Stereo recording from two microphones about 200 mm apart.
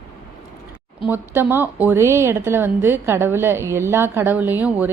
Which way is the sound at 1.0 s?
10° right (ahead or behind).